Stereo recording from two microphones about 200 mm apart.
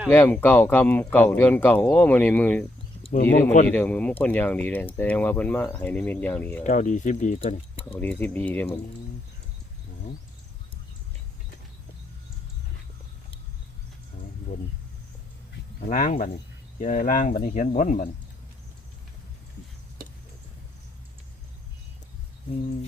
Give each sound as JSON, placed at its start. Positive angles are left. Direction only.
{"t": 0.1, "sound": "speech", "side_deg": 10}
{"t": 3.2, "sound": "speech", "side_deg": 45}
{"t": 3.7, "sound": "speech", "side_deg": 10}
{"t": 6.7, "sound": "speech", "side_deg": 40}
{"t": 8.0, "sound": "speech", "side_deg": 10}
{"t": 15.8, "sound": "speech", "side_deg": 40}